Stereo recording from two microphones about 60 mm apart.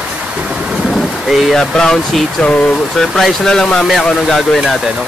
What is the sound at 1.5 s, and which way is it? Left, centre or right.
Speech, centre.